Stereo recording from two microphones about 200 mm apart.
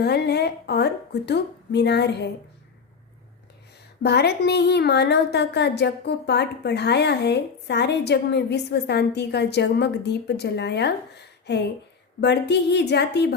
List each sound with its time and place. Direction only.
0.0 s a woman's voice: 55° left (ahead or behind)
4.0 s a woman's voice: 55° left (ahead or behind)